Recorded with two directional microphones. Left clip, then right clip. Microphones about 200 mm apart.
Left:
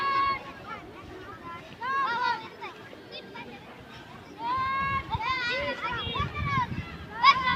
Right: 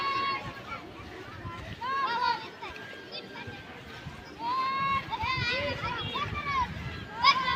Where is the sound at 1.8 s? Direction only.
35° left (ahead or behind).